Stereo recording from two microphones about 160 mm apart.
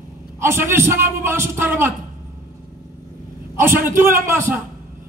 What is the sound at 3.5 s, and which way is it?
A man's voice, 15° right (ahead or behind).